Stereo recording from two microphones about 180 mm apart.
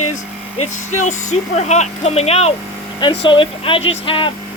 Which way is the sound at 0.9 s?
40° left (ahead or behind).